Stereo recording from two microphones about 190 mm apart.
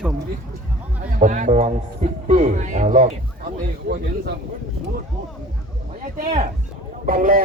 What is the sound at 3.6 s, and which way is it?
Speech, 55° right (ahead or behind).